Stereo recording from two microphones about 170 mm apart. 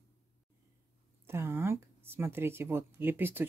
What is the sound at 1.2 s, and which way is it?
A woman's voice, 15° right (ahead or behind).